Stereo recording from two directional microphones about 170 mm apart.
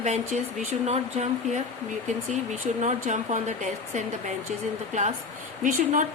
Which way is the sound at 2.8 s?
45° right (ahead or behind).